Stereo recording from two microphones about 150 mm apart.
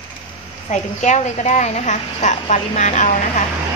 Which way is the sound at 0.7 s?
50° left (ahead or behind).